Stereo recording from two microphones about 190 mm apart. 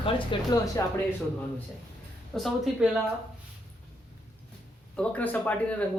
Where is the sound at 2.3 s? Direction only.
Centre (ahead or behind).